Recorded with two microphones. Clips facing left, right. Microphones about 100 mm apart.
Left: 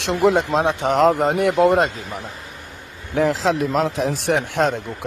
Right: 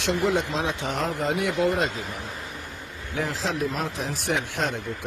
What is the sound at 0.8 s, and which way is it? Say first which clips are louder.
Speech: left 11 dB; 80° left.